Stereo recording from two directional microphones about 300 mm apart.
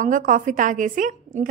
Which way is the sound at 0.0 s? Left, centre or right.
Right.